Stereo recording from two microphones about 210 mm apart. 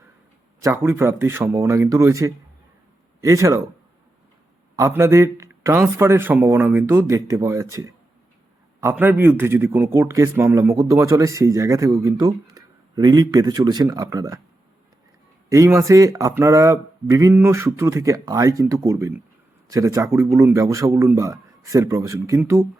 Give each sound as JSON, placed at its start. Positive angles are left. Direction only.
{"t": 0.6, "sound": "a man's voice", "side_deg": -10}
{"t": 4.8, "sound": "a man's voice", "side_deg": -15}
{"t": 15.4, "sound": "a man's voice", "side_deg": -15}